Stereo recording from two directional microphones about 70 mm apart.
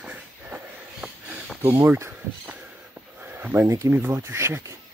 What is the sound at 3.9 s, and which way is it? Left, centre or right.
Speech, right.